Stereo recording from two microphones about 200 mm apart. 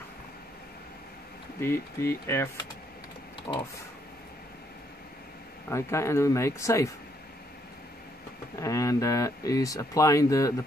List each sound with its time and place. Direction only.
1.6 s speech: 10° left (ahead or behind)
5.7 s speech: 15° left (ahead or behind)
8.5 s speech: 15° left (ahead or behind)